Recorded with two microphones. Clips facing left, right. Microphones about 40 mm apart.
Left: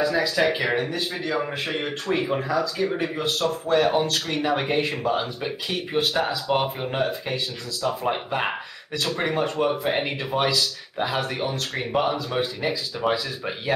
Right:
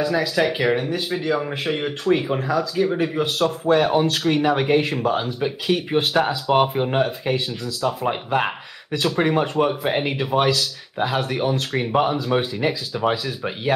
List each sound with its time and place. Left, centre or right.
0.0 s speech: centre
4.5 s speech: centre
5.9 s speech: centre
7.0 s speech: centre